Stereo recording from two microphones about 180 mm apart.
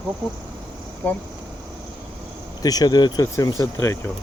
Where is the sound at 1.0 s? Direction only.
10° left (ahead or behind).